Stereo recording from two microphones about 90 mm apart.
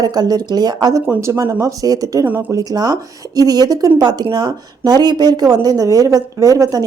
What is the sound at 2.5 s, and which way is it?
Speech, 45° right (ahead or behind).